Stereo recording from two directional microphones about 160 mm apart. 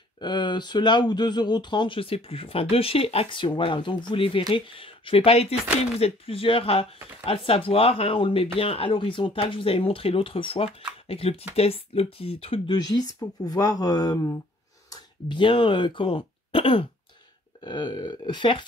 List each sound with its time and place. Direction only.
0.2 s speech: 25° left (ahead or behind)
14.9 s speech: 30° left (ahead or behind)